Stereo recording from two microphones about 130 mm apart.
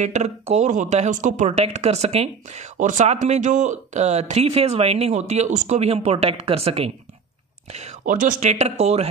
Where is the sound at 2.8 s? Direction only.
65° right (ahead or behind); by 6.9 s 50° right (ahead or behind).